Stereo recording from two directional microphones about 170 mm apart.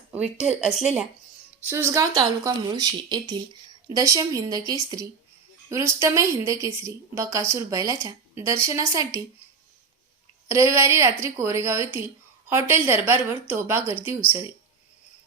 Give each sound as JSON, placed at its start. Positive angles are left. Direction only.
{"t": 0.1, "sound": "a woman's voice", "side_deg": -5}
{"t": 10.5, "sound": "a woman's voice", "side_deg": -15}